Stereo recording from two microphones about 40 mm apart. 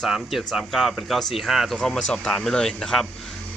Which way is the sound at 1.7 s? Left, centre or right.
Centre.